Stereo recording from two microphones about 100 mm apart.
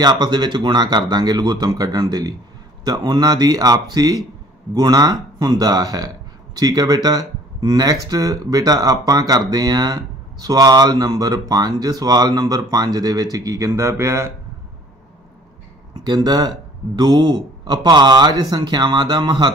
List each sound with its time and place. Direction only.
0.0 s speech: 45° right (ahead or behind); by 14.3 s 25° right (ahead or behind)
15.9 s speech: 45° right (ahead or behind)